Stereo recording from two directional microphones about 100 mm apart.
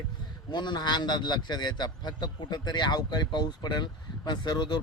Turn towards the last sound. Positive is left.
turn(degrees=50)  # may be behind; listen again after turning